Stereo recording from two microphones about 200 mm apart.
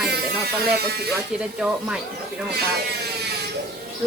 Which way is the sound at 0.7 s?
55° right (ahead or behind).